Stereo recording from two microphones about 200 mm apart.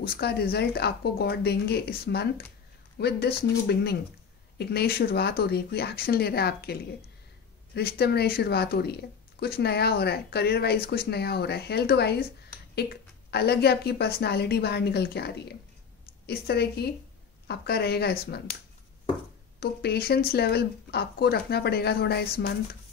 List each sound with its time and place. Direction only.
0.0 s speech: 55° left (ahead or behind)
13.3 s speech: 55° left (ahead or behind)
19.6 s speech: 50° left (ahead or behind)